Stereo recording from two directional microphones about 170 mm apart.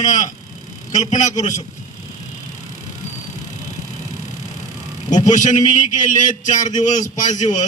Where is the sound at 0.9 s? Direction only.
45° left (ahead or behind).